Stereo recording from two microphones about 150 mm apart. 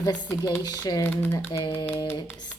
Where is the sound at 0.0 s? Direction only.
25° left (ahead or behind).